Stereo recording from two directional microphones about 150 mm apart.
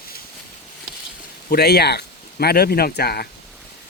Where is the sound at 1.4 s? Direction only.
90° left.